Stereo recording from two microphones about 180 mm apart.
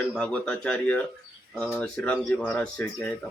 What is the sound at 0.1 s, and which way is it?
Speech, 5° left (ahead or behind).